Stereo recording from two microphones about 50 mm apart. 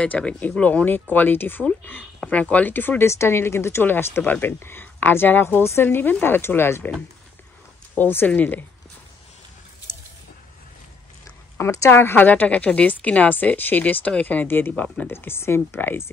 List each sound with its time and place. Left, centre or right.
0.0 s a woman's voice: left
0.8 s a woman's voice: left
2.2 s a woman's voice: left
3.0 s a woman's voice: left
3.8 s a woman's voice: left
5.6 s speech: left
8.0 s a woman's voice: left
11.5 s speech: left
11.9 s speech: left
12.3 s a woman's voice: left
15.0 s speech: left